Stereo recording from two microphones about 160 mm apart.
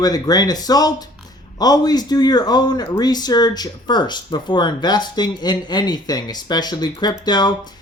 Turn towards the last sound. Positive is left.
turn(degrees=25)  # may be behind; listen again after turning